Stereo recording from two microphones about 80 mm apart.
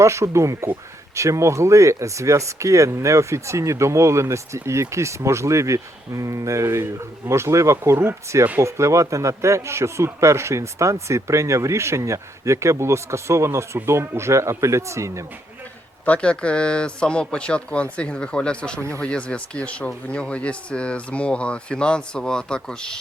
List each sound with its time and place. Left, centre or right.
0.0 s speech: right
16.0 s speech: centre
18.8 s speech: right
19.0 s speech: centre